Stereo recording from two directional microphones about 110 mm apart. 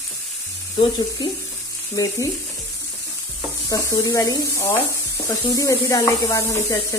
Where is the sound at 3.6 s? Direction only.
30° left (ahead or behind).